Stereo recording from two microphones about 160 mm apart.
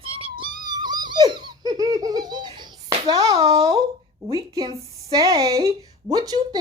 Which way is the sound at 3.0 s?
20° right (ahead or behind).